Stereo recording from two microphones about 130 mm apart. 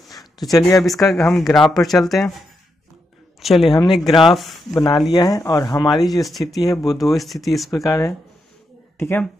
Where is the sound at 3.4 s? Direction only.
Centre (ahead or behind).